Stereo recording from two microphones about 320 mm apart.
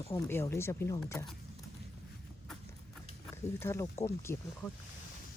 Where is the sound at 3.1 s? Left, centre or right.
Centre.